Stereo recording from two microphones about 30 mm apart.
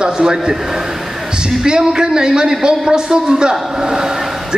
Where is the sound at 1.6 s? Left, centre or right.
Right.